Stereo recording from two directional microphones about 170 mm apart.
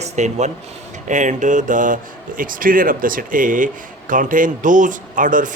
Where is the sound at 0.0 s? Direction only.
40° right (ahead or behind).